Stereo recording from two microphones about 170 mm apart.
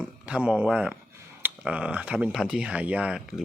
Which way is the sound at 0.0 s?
5° right (ahead or behind).